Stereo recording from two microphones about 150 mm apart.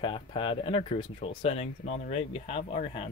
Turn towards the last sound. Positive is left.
turn(degrees=40)  # may be behind; listen again after turning